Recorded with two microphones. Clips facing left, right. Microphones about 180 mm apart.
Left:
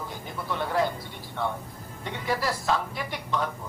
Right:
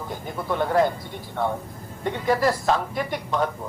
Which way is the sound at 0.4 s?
50° right (ahead or behind).